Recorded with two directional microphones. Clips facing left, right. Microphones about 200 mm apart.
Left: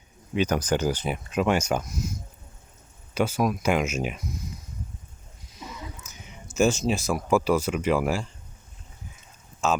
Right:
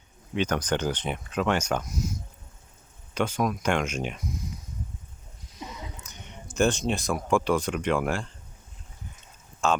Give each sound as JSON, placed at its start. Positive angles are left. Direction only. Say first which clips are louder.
{"t": 0.3, "sound": "speech", "louder": "left 2 dB", "side_deg": 10}
{"t": 3.2, "sound": "speech", "louder": "left 2 dB", "side_deg": 5}
{"t": 6.1, "sound": "speech", "louder": "right 1 dB", "side_deg": 5}
{"t": 9.6, "sound": "speech", "louder": "even", "side_deg": 5}